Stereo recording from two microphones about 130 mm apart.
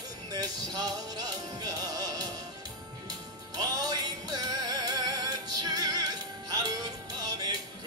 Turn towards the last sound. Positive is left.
turn(degrees=-30)  # may be behind; listen again after turning